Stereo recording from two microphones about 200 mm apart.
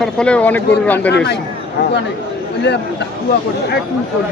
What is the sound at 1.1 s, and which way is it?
Speech, 60° left (ahead or behind).